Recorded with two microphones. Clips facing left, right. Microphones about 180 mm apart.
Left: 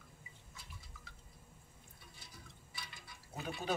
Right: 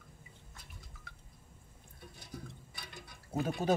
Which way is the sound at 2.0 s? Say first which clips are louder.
Right 12 dB; 50° right (ahead or behind).